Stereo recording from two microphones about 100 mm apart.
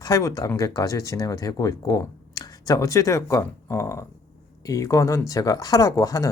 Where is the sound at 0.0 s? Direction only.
35° left (ahead or behind).